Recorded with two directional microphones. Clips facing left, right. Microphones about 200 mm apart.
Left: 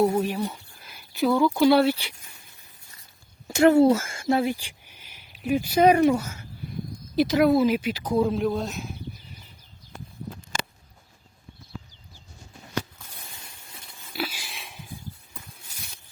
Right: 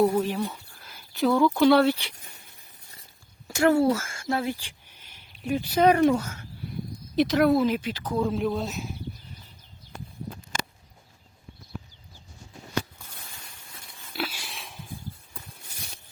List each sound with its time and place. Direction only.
0.1 s speech: 15° left (ahead or behind)
3.4 s speech: 20° left (ahead or behind)
8.3 s speech: centre (ahead or behind)
14.1 s sniff: 5° left (ahead or behind)